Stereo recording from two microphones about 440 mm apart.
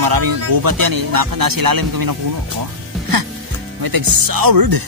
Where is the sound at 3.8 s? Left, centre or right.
Right.